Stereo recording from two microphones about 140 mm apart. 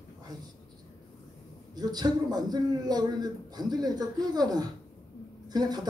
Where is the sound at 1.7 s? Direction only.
30° right (ahead or behind).